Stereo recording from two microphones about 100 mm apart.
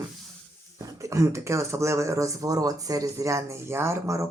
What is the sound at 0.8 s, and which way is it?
Speech, 30° right (ahead or behind).